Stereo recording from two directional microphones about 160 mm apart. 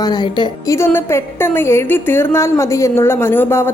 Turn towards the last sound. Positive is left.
turn(degrees=15)  # may be behind; listen again after turning